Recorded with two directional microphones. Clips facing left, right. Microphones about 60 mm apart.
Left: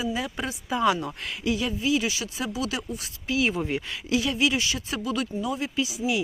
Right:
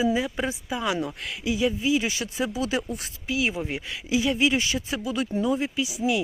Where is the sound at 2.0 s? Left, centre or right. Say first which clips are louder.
Right 2 dB; right.